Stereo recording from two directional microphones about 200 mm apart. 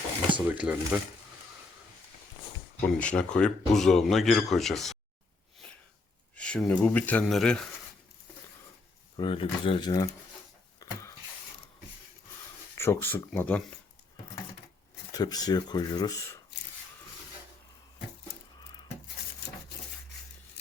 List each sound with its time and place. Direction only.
0.4 s speech: 5° right (ahead or behind)
2.8 s speech: 5° left (ahead or behind)
6.3 s speech: 5° left (ahead or behind)
9.1 s speech: 25° left (ahead or behind)
10.8 s a sound: 15° left (ahead or behind)
12.7 s speech: 10° left (ahead or behind)
15.1 s speech: 20° left (ahead or behind)